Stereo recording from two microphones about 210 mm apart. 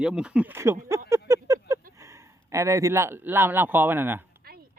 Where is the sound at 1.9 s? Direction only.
15° right (ahead or behind).